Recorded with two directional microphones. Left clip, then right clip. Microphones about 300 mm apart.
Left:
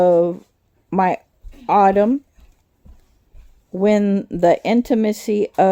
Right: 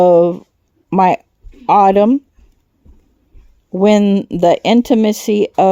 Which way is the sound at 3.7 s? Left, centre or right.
Right.